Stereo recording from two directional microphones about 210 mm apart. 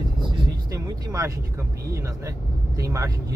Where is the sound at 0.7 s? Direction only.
15° right (ahead or behind).